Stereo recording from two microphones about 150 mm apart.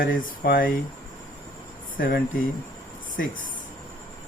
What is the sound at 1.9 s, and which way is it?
Speech, 70° left (ahead or behind).